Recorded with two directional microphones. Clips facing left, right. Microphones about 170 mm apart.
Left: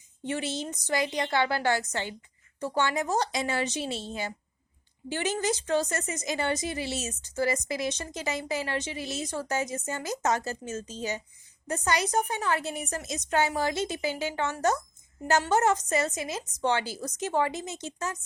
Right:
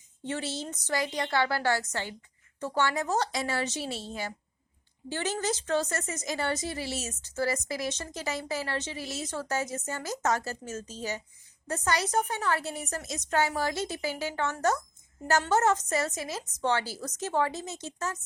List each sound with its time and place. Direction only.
0.2 s a woman's voice: 15° left (ahead or behind)